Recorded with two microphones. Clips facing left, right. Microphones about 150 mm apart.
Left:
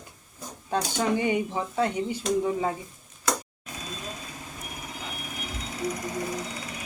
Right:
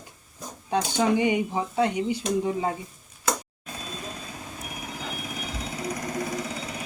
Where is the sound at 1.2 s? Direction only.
15° right (ahead or behind).